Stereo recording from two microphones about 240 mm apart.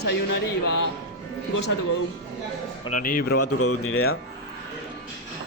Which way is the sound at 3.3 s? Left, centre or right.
Left.